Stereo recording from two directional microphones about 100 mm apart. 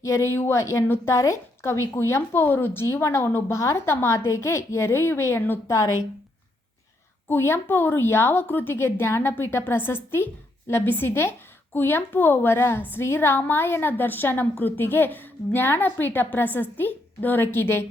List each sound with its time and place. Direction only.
0.0 s speech: 30° left (ahead or behind)
7.3 s speech: 25° left (ahead or behind)